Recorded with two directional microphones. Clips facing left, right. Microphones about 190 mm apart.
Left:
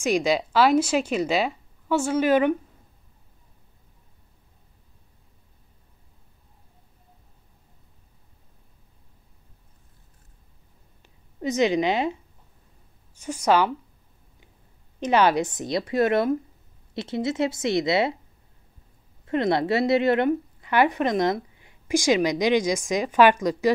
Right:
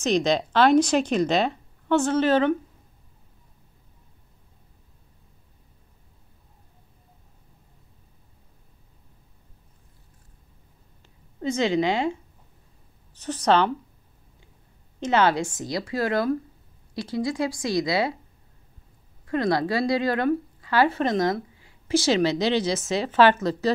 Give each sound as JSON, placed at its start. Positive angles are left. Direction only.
{"t": 0.0, "sound": "a woman's voice", "side_deg": 10}
{"t": 11.4, "sound": "a woman's voice", "side_deg": 15}
{"t": 13.2, "sound": "a woman's voice", "side_deg": 10}
{"t": 15.0, "sound": "a woman's voice", "side_deg": 15}
{"t": 19.2, "sound": "a woman's voice", "side_deg": 25}